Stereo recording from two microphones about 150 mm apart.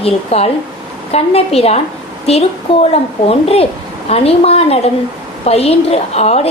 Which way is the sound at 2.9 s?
40° left (ahead or behind).